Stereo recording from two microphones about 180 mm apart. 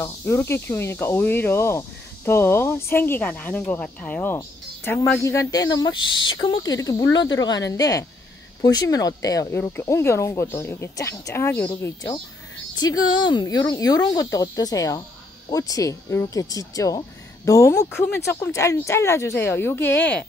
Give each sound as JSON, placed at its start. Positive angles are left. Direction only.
{"t": 0.0, "sound": "speech", "side_deg": 15}
{"t": 12.7, "sound": "speech", "side_deg": 20}